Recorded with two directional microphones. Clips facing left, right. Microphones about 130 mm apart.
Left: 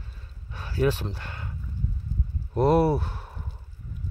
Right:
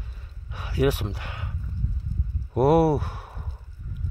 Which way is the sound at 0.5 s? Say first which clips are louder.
Right 2 dB; 15° right (ahead or behind).